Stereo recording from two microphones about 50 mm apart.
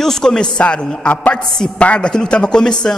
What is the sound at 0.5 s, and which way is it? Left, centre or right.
Speech, left.